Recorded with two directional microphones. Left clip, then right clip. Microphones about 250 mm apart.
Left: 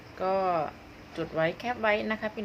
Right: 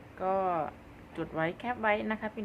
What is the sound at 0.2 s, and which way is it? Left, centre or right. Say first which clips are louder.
A woman's voice: left 3 dB; centre.